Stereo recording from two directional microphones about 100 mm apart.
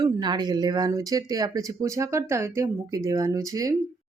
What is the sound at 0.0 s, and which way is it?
Speech, 45° right (ahead or behind).